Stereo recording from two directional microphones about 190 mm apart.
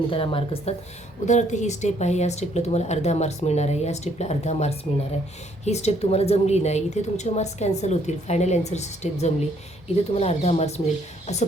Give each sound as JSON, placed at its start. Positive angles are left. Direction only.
{"t": 0.1, "sound": "a woman's voice", "side_deg": 30}